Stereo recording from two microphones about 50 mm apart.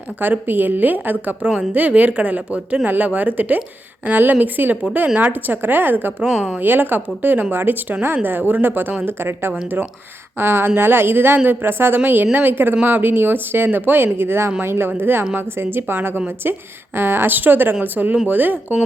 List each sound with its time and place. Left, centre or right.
0.2 s a woman's voice: right
1.9 s a woman's voice: right
5.0 s speech: right
5.3 s a woman's voice: right
6.2 s speech: right
6.6 s a woman's voice: right